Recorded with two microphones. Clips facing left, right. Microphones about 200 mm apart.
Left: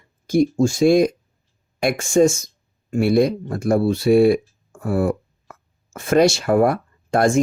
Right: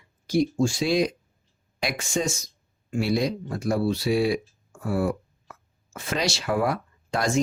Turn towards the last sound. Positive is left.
turn(degrees=50)  # may be behind; listen again after turning